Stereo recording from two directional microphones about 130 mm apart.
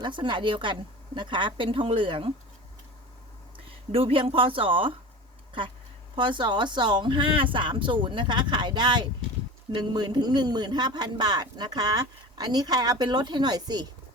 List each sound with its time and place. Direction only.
0.0 s speech: 40° right (ahead or behind)
3.9 s speech: 45° right (ahead or behind)
6.1 s speech: 40° right (ahead or behind)